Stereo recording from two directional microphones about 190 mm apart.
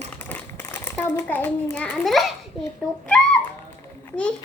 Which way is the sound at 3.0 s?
5° left (ahead or behind).